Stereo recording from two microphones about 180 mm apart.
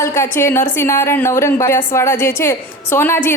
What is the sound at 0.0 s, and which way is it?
A woman's voice, 15° left (ahead or behind).